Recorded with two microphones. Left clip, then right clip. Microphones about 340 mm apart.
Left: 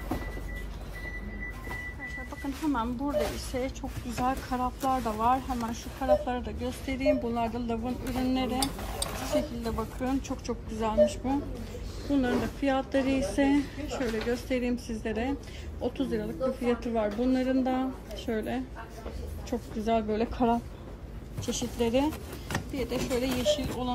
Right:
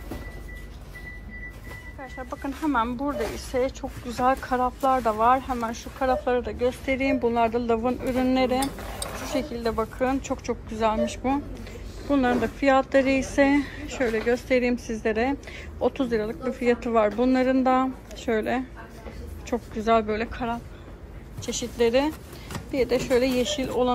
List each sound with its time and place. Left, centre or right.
2.4 s speech: centre